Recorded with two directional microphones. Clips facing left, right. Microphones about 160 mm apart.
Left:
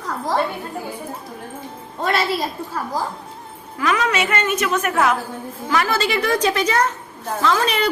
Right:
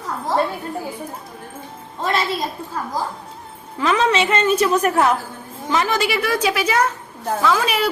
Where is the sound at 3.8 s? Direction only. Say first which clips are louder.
Right 2 dB; 30° right (ahead or behind).